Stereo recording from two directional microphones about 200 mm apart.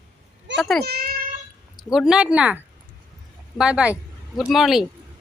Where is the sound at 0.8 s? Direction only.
50° right (ahead or behind).